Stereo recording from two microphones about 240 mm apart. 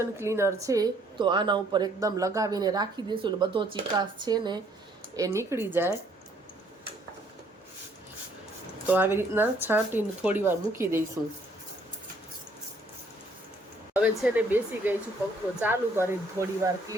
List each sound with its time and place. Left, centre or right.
0.0 s a woman's voice: centre
8.9 s a woman's voice: centre
13.9 s a woman's voice: centre